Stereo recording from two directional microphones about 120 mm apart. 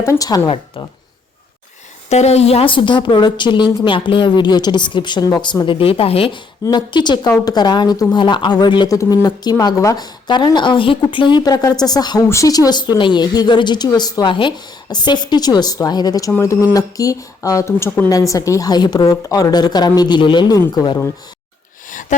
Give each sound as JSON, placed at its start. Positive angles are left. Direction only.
{"t": 0.0, "sound": "speech", "side_deg": 20}
{"t": 0.3, "sound": "a woman's voice", "side_deg": 35}
{"t": 2.0, "sound": "a woman's voice", "side_deg": 65}
{"t": 6.7, "sound": "a woman's voice", "side_deg": 40}